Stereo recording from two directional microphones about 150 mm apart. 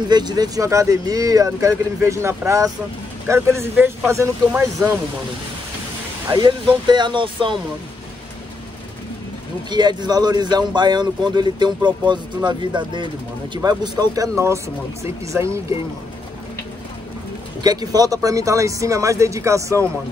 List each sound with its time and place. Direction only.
0.1 s speech: 30° right (ahead or behind)
6.3 s speech: 30° right (ahead or behind)
9.7 s speech: 30° right (ahead or behind)
17.6 s speech: 25° right (ahead or behind)